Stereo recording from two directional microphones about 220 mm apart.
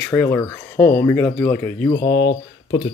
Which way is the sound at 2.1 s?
55° left (ahead or behind).